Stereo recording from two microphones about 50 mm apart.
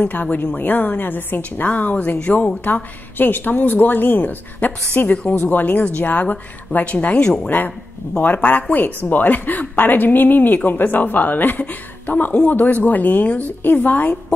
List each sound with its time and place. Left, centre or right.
0.0 s a woman's voice: left